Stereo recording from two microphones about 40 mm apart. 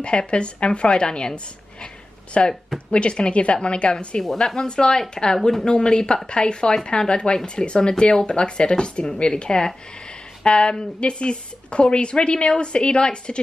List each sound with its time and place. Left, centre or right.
0.0 s a woman's voice: left
4.2 s a woman's voice: centre; by 13.4 s left